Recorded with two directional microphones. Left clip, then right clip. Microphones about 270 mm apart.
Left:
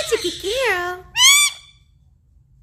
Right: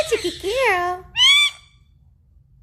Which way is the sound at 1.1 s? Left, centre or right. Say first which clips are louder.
Left 1 dB; centre.